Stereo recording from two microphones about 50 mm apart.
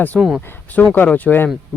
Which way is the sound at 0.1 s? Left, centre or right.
Centre.